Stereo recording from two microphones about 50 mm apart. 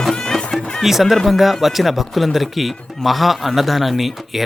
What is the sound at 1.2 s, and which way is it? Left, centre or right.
Speech, centre.